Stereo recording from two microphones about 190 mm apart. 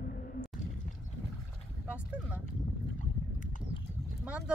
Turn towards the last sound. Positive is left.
turn(degrees=-5)  # may be behind; listen again after turning